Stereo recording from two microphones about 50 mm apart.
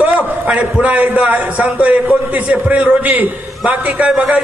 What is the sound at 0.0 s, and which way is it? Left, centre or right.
A man's voice, right.